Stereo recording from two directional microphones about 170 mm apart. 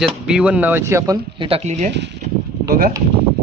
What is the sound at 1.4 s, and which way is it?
Speech, 35° right (ahead or behind).